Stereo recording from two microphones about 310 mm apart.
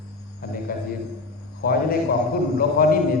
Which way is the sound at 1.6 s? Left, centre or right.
Left.